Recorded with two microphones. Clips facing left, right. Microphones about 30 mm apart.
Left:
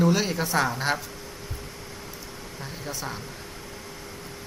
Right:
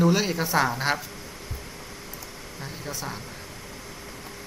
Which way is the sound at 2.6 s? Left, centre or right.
Centre.